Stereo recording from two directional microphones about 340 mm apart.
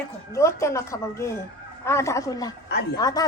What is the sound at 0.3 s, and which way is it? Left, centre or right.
Speech, centre.